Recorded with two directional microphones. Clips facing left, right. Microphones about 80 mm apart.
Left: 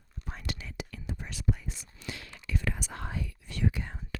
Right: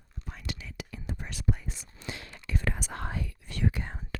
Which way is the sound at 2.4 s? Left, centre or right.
Right.